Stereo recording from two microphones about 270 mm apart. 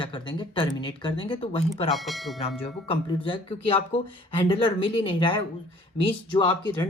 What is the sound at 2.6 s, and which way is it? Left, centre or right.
Speech, left.